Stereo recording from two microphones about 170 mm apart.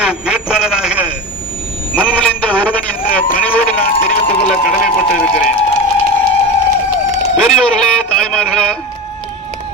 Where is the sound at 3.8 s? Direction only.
55° left (ahead or behind).